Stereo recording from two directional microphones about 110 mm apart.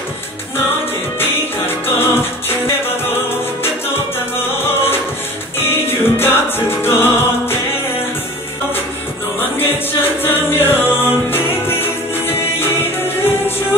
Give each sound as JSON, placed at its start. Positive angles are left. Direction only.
{"t": 5.6, "sound": "music", "side_deg": 20}
{"t": 9.6, "sound": "music", "side_deg": 20}